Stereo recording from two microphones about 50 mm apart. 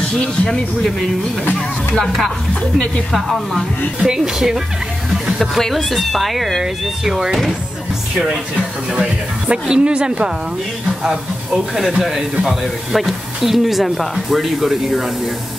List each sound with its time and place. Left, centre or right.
3.1 s speech: centre
4.0 s speech: centre
5.4 s speech: centre
8.3 s speech: centre